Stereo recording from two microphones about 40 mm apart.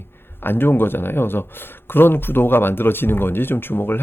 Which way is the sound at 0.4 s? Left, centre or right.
Left.